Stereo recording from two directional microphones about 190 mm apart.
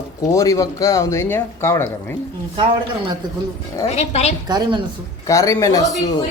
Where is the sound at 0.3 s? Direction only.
15° left (ahead or behind).